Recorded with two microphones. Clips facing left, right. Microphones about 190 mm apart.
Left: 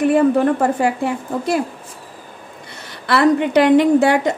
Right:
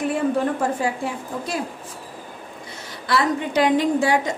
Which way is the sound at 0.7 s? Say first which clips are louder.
Left 6 dB; 65° left (ahead or behind).